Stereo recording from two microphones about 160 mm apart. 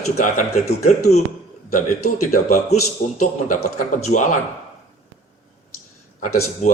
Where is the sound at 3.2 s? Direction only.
55° left (ahead or behind).